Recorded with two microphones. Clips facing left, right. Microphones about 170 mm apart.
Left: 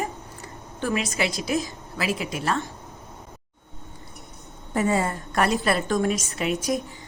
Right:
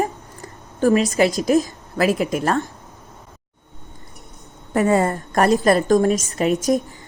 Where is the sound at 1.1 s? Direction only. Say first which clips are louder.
Right 9 dB; 40° right (ahead or behind).